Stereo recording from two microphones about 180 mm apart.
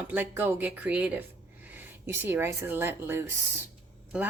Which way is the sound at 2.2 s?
15° right (ahead or behind).